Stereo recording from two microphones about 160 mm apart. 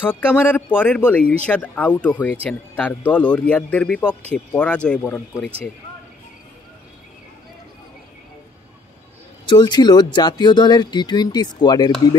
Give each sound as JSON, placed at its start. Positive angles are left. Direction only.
{"t": 0.0, "sound": "speech", "side_deg": 10}
{"t": 9.5, "sound": "speech", "side_deg": 30}